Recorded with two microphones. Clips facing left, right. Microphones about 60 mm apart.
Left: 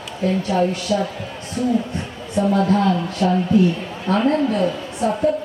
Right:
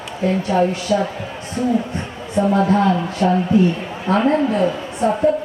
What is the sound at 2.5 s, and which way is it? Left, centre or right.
A man's voice, centre.